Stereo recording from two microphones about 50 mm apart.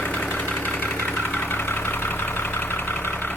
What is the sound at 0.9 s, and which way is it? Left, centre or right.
Vehicle, left.